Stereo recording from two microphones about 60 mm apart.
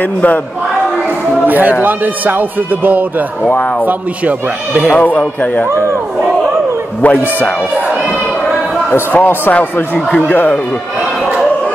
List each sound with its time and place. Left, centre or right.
0.0 s a man's voice: left
1.4 s a man's voice: right
4.9 s a man's voice: left
7.0 s a man's voice: left
9.1 s speech: left
9.9 s speech: centre